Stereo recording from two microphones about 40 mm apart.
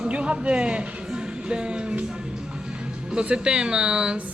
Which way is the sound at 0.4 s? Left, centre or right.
Right.